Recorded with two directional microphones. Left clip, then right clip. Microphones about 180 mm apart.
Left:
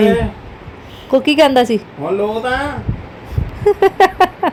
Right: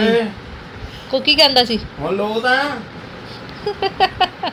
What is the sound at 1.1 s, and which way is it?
Speech, 45° left (ahead or behind).